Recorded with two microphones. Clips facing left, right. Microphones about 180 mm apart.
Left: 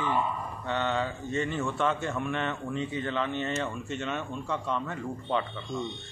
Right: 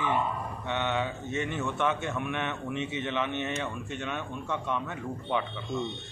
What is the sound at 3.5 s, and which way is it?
Speech, centre (ahead or behind).